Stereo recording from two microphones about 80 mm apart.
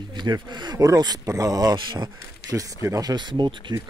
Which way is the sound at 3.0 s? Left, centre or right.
Right.